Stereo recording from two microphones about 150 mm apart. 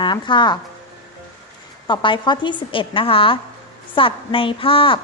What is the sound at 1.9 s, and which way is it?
A woman's voice, 30° left (ahead or behind).